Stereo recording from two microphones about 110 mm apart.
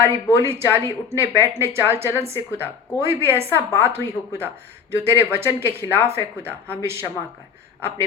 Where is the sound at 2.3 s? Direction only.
20° right (ahead or behind).